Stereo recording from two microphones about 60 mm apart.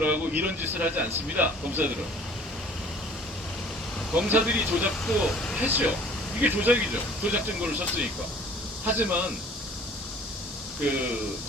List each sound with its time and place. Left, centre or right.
0.0 s speech: right
4.1 s speech: right
5.0 s speech: centre
5.5 s speech: right
8.9 s speech: right
10.8 s speech: right